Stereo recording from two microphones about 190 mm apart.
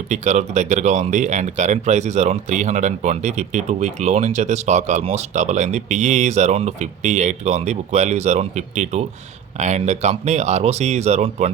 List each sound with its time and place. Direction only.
0.1 s speech: 35° right (ahead or behind)